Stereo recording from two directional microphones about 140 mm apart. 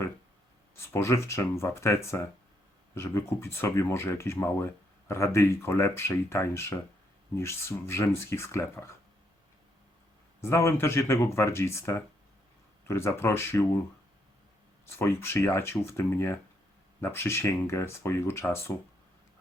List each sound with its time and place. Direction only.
0.8 s speech: 20° left (ahead or behind)
10.4 s speech: 20° left (ahead or behind)
14.8 s speech: 20° left (ahead or behind)